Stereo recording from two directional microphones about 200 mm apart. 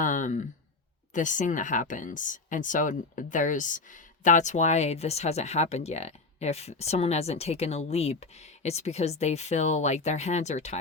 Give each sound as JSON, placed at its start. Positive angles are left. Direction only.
{"t": 0.0, "sound": "speech", "side_deg": 40}